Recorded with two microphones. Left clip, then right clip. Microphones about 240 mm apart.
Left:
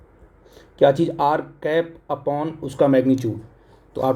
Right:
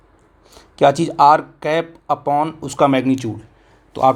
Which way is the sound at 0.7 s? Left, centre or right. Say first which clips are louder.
Right 3 dB; right.